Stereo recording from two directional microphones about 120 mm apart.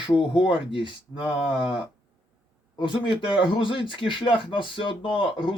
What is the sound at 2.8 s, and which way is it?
A man's voice, 45° left (ahead or behind).